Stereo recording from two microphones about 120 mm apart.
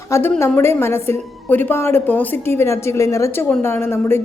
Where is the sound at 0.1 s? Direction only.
20° left (ahead or behind).